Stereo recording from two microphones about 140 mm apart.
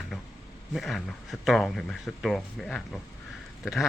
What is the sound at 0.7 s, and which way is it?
Speech, centre (ahead or behind).